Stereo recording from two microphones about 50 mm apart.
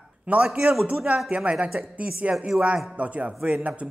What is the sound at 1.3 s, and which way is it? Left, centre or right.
A woman's voice, right.